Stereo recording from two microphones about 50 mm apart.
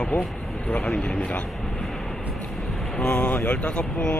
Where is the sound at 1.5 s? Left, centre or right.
Centre.